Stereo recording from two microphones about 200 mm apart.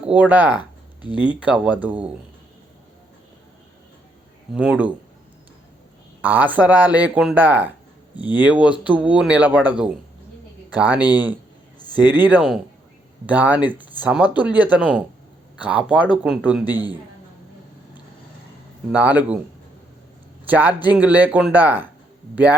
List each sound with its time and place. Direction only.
0.0 s speech: 5° right (ahead or behind)
4.5 s speech: 5° right (ahead or behind)
6.2 s speech: 10° right (ahead or behind)
8.7 s speech: 25° left (ahead or behind)
9.0 s speech: 5° right (ahead or behind)
10.8 s speech: 5° right (ahead or behind)
11.8 s speech: 20° left (ahead or behind)
12.3 s speech: 5° right (ahead or behind)
16.6 s speech: 20° left (ahead or behind)
18.9 s speech: 10° right (ahead or behind)
20.5 s speech: 10° right (ahead or behind)